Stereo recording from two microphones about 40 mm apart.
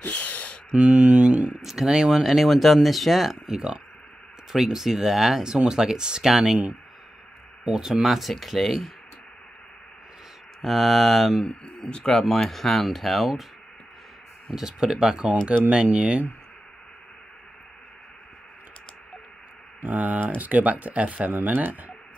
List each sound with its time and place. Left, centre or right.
0.0 s a sound: left
0.7 s speech: right
1.6 s speech: centre
5.4 s speech: centre
7.6 s speech: centre
10.6 s speech: centre
11.9 s speech: centre
14.5 s speech: centre
15.7 s speech: right
19.8 s speech: right
21.3 s speech: right